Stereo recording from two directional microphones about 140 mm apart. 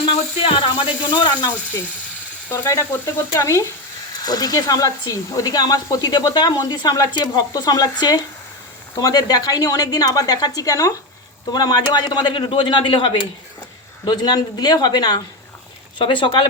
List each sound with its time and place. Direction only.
0.1 s a man's voice: 40° left (ahead or behind)
2.5 s a man's voice: 20° left (ahead or behind); by 16.5 s 35° left (ahead or behind)